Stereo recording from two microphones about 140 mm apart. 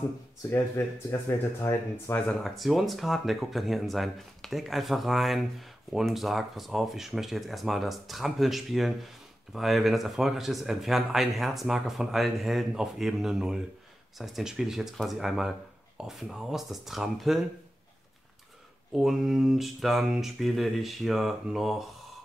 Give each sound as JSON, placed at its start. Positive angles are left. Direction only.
{"t": 0.5, "sound": "speech", "side_deg": 15}
{"t": 2.3, "sound": "speech", "side_deg": 0}
{"t": 18.9, "sound": "speech", "side_deg": 0}